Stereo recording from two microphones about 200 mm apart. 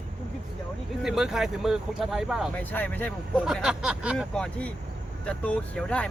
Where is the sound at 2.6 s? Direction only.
10° left (ahead or behind).